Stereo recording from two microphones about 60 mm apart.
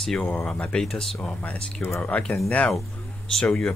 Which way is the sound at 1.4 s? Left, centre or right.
Left.